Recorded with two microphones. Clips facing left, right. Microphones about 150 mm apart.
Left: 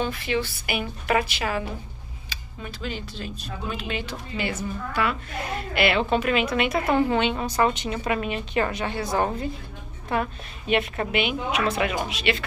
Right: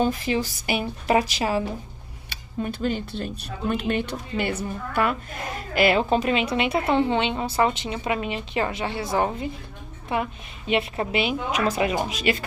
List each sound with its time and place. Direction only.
0.0 s a woman's voice: 40° right (ahead or behind)
2.6 s speech: 50° right (ahead or behind)
5.8 s a woman's voice: 35° right (ahead or behind)